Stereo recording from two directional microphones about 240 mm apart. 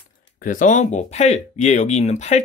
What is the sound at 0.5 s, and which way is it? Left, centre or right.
Speech, left.